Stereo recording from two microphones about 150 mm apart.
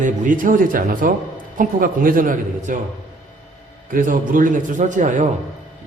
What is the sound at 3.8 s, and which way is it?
A man's voice, 60° right (ahead or behind).